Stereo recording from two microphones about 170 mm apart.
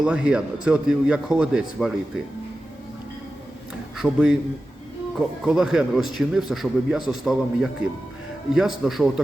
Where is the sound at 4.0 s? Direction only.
5° right (ahead or behind).